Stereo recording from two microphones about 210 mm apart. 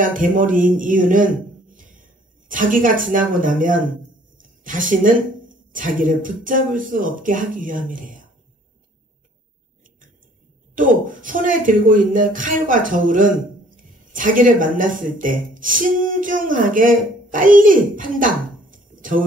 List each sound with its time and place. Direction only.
0.0 s a woman's voice: 40° right (ahead or behind)
10.7 s speech: 40° right (ahead or behind)